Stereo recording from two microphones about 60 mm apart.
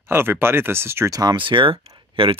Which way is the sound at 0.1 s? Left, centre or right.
Right.